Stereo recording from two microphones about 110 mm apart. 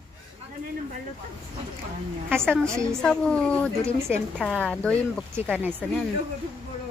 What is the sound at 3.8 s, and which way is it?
Speech, 25° right (ahead or behind).